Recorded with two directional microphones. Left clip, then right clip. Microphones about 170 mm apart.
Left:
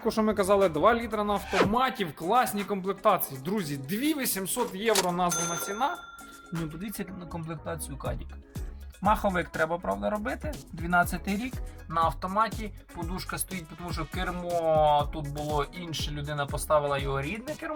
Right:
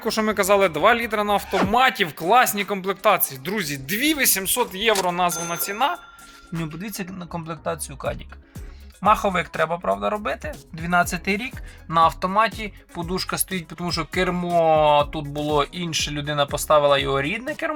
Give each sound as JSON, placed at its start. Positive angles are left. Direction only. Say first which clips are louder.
{"t": 0.0, "sound": "speech", "louder": "right 5 dB", "side_deg": -5}
{"t": 7.0, "sound": "speech", "louder": "right 7 dB", "side_deg": -40}
{"t": 9.0, "sound": "speech", "louder": "right 7 dB", "side_deg": -20}